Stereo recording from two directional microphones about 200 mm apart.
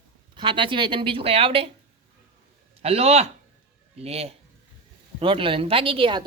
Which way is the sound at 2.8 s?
30° right (ahead or behind).